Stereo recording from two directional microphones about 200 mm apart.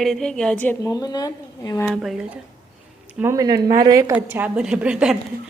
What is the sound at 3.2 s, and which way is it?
A woman's voice, 15° right (ahead or behind).